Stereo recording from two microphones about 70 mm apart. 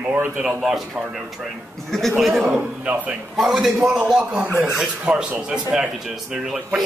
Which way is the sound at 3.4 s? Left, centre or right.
Centre.